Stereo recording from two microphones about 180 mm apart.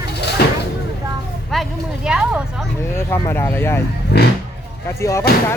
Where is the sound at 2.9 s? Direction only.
15° left (ahead or behind).